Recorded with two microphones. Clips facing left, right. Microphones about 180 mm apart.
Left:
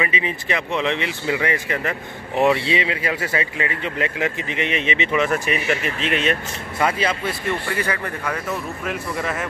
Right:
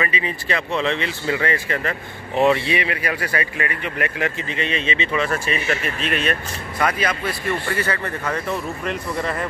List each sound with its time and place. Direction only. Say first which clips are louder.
0.0 s speech: left 1 dB; 20° left (ahead or behind)